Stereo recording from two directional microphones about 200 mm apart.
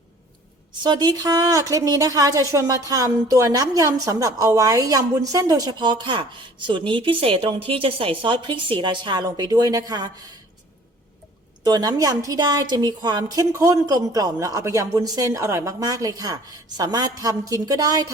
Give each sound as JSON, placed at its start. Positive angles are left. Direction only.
{"t": 0.8, "sound": "a woman's voice", "side_deg": -20}
{"t": 11.6, "sound": "a woman's voice", "side_deg": -20}